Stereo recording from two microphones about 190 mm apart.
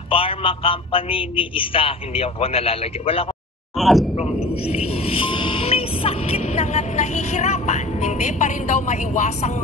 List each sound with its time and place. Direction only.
0.1 s a man's voice: 30° left (ahead or behind)
3.7 s speech: centre (ahead or behind)
4.2 s speech: 30° left (ahead or behind)